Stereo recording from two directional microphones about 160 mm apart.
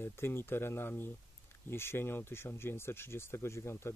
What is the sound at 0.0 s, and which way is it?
Speech, 15° left (ahead or behind).